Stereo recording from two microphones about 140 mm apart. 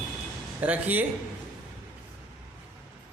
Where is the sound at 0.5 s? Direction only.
10° right (ahead or behind).